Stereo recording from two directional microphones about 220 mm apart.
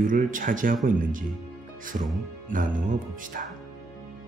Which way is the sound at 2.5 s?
35° right (ahead or behind).